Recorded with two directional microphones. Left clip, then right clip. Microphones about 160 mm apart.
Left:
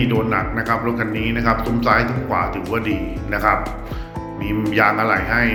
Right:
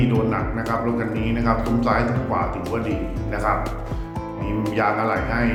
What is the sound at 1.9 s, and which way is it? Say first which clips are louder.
A man's voice: left 6 dB; 10° left (ahead or behind).